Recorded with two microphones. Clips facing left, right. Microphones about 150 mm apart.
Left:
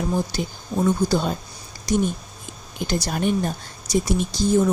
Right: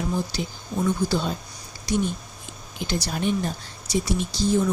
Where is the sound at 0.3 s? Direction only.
50° left (ahead or behind).